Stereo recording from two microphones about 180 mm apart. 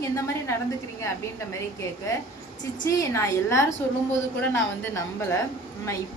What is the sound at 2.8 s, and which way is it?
A woman's voice, 15° left (ahead or behind).